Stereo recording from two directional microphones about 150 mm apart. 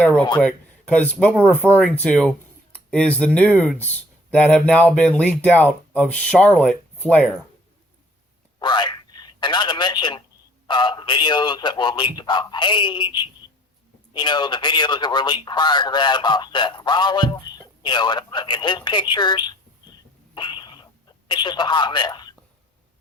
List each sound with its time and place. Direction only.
0.3 s speech: 10° left (ahead or behind)
8.5 s telephone: 30° left (ahead or behind)
10.7 s speech: 30° left (ahead or behind)
20.3 s throat clearing: 30° left (ahead or behind)
21.2 s speech: 30° left (ahead or behind)